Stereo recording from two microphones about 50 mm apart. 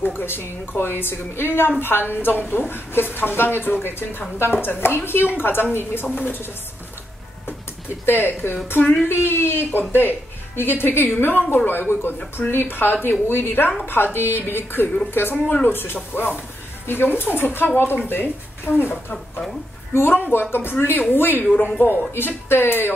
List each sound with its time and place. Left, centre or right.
0.0 s speech: left
6.1 s speech: left
8.0 s speech: left
20.8 s speech: left
21.1 s speech: left